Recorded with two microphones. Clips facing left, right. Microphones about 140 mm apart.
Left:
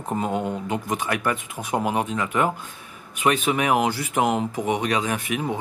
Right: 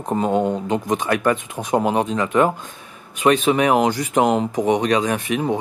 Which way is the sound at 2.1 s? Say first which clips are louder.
Right 5 dB; 35° right (ahead or behind).